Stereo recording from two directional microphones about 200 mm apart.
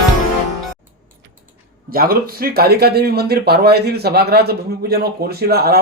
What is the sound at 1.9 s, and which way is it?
Speech, 50° right (ahead or behind).